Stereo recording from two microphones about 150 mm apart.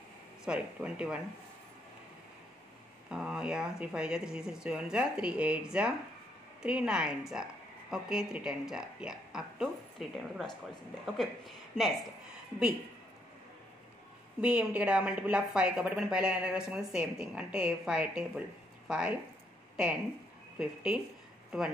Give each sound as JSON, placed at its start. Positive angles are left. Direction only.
{"t": 0.5, "sound": "a woman's voice", "side_deg": -10}
{"t": 3.1, "sound": "speech", "side_deg": -5}
{"t": 11.7, "sound": "speech", "side_deg": 0}
{"t": 14.4, "sound": "a woman's voice", "side_deg": -5}
{"t": 20.5, "sound": "a woman's voice", "side_deg": -5}